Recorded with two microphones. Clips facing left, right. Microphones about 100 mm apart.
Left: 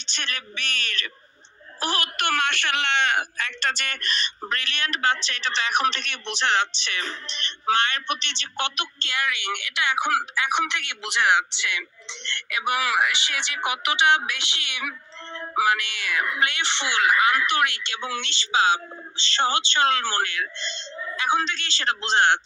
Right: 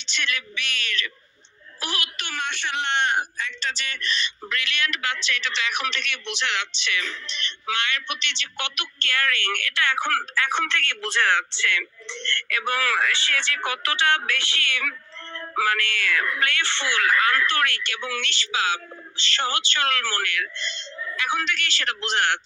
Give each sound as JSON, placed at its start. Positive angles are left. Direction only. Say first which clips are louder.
{"t": 0.0, "sound": "a woman's voice", "louder": "right 4 dB", "side_deg": 40}
{"t": 2.1, "sound": "speech", "louder": "left 7 dB", "side_deg": 65}